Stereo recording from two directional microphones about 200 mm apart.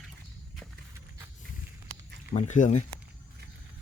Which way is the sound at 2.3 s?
35° left (ahead or behind).